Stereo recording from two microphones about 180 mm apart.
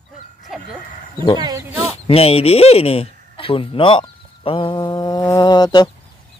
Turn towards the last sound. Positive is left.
turn(degrees=25)  # may be behind; listen again after turning